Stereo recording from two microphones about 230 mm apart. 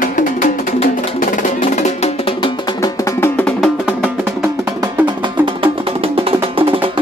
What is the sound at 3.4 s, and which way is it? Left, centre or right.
Music, centre.